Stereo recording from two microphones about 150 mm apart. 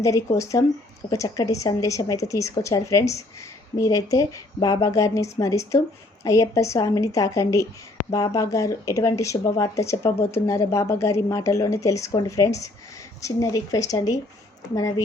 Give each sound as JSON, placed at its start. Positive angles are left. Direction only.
{"t": 0.0, "sound": "speech", "side_deg": 20}